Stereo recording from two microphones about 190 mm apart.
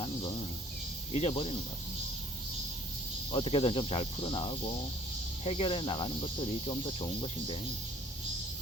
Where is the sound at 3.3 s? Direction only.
30° left (ahead or behind).